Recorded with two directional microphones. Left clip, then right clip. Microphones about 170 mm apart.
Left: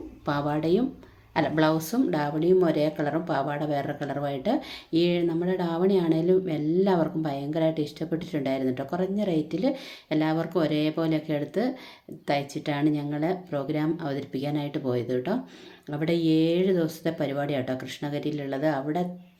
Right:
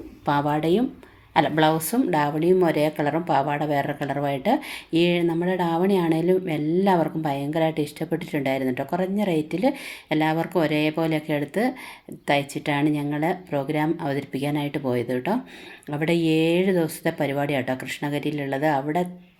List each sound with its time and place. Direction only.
0.3 s speech: 10° right (ahead or behind)